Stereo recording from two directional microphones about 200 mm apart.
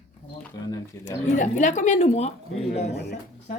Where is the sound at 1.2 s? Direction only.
40° left (ahead or behind).